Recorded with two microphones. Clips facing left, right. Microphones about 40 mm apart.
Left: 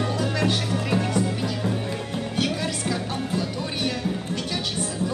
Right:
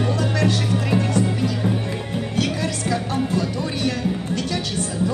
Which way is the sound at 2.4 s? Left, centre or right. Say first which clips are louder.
Right 2 dB; right.